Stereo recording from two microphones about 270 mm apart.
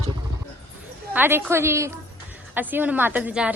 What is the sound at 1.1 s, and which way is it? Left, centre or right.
A woman's voice, centre.